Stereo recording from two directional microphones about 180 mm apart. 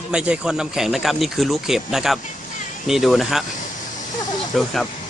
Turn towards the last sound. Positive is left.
turn(degrees=0)  # may be behind; listen again after turning